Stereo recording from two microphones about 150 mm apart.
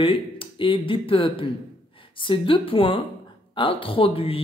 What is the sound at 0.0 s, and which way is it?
A woman's voice, 35° left (ahead or behind).